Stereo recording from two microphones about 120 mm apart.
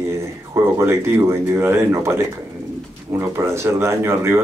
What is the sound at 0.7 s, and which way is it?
Speech, 20° right (ahead or behind).